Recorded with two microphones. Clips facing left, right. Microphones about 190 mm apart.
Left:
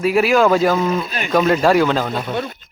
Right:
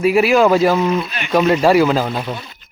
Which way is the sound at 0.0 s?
10° right (ahead or behind).